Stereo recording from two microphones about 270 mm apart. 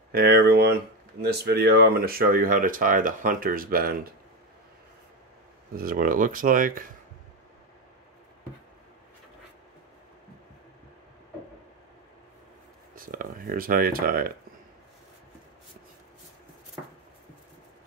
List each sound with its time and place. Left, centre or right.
0.1 s speech: right
5.8 s speech: right
12.9 s speech: right